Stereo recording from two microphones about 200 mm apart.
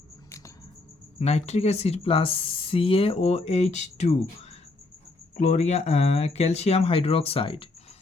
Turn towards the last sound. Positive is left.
turn(degrees=25)  # may be behind; listen again after turning